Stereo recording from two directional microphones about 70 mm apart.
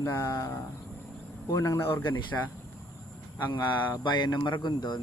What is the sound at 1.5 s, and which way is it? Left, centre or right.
Speech, left.